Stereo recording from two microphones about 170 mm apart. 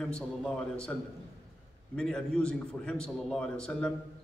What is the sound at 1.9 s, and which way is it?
A man's voice, 5° left (ahead or behind).